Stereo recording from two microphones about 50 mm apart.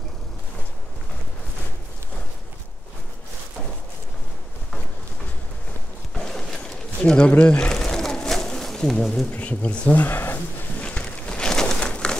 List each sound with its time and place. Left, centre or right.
6.1 s a sound: centre
7.1 s pigeon: centre
8.9 s speech: centre
9.3 s speech: left
9.9 s speech: left
10.8 s a sound: left